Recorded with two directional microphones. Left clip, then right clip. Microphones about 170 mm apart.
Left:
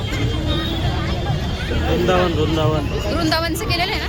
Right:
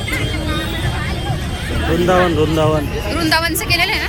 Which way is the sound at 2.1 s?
55° right (ahead or behind).